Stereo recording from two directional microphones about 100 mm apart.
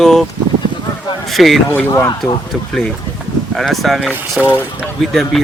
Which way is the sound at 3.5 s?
Centre (ahead or behind).